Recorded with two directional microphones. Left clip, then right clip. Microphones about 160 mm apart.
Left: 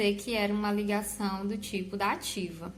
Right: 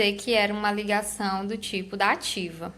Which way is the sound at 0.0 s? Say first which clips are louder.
Right 6 dB; 20° right (ahead or behind).